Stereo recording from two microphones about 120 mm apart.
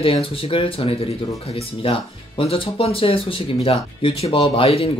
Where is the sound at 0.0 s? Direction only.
50° left (ahead or behind).